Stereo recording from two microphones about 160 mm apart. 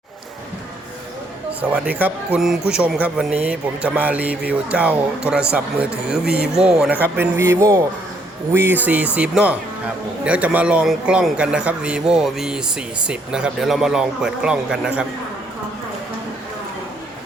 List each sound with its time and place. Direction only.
1.7 s a man's voice: 10° right (ahead or behind)